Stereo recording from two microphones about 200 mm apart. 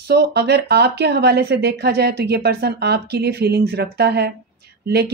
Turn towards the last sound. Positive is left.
turn(degrees=-55)  # may be behind; listen again after turning